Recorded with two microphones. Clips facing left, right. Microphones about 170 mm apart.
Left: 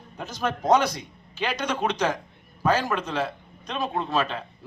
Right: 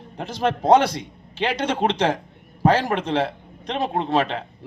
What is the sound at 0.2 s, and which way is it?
Speech, 30° right (ahead or behind).